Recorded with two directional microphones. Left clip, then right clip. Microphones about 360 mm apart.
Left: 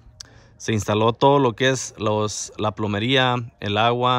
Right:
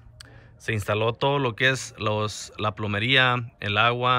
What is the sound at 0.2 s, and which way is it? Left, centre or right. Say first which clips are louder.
Speech: left 3 dB; centre.